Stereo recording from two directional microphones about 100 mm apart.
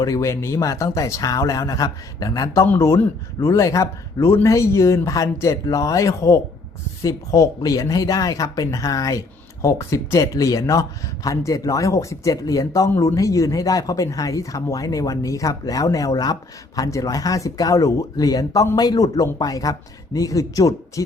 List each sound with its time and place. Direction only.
0.0 s speech: 35° left (ahead or behind)
2.6 s speech: 25° left (ahead or behind)